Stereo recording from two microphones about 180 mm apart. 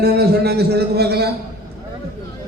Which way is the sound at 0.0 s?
60° right (ahead or behind).